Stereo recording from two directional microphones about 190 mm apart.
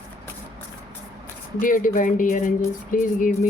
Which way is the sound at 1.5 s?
45° left (ahead or behind).